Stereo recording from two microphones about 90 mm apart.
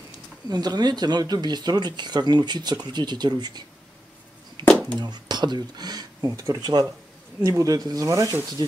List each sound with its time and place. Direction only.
0.5 s speech: 50° right (ahead or behind)
4.6 s a sound: 50° right (ahead or behind)
5.0 s speech: 55° right (ahead or behind); by 8.4 s 40° right (ahead or behind)
8.6 s speech: 50° right (ahead or behind)